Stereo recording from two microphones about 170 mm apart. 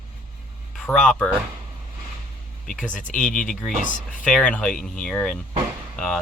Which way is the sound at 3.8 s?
50° left (ahead or behind).